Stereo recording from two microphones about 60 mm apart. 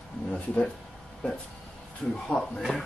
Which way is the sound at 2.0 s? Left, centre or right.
Centre.